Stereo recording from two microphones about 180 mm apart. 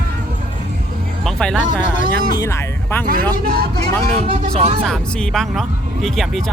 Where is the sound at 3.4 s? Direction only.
60° right (ahead or behind).